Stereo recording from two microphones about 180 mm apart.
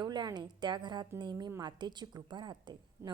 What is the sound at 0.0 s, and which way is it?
A woman's voice, 25° right (ahead or behind).